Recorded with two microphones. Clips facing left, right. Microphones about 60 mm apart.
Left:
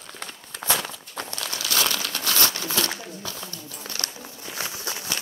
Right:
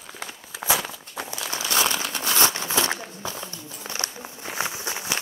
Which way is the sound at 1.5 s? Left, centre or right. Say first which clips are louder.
Right 2 dB; right.